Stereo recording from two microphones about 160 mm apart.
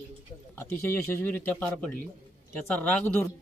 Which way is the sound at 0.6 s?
15° left (ahead or behind).